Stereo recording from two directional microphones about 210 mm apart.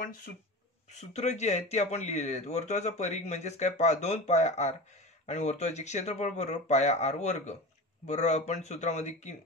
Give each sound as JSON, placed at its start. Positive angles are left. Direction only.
{"t": 0.9, "sound": "speech", "side_deg": 30}